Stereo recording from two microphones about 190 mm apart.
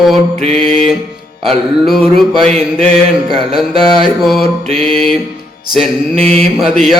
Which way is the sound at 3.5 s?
Centre (ahead or behind).